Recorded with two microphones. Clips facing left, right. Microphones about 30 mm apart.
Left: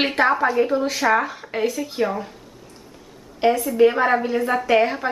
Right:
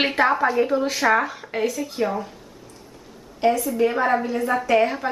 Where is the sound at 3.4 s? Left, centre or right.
Centre.